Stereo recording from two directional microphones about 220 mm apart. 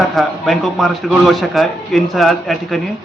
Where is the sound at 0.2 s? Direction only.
Centre (ahead or behind).